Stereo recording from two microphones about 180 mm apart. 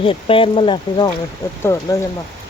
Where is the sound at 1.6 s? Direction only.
15° left (ahead or behind).